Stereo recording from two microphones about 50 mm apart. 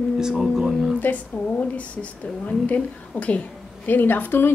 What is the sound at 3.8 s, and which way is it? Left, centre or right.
Speech, left.